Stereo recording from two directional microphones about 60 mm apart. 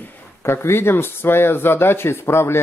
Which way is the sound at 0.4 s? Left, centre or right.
Left.